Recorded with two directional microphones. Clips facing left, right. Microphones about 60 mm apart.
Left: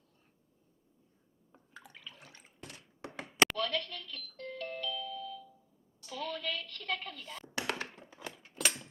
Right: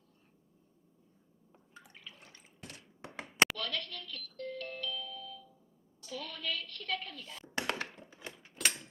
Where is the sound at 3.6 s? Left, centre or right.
Left.